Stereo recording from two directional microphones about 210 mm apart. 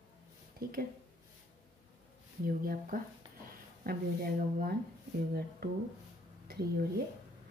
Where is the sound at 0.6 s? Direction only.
45° right (ahead or behind).